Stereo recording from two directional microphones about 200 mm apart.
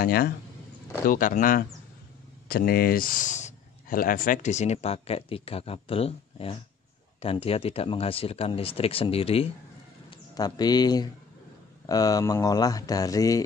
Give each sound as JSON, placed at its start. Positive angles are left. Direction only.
{"t": 0.0, "sound": "a man's voice", "side_deg": 50}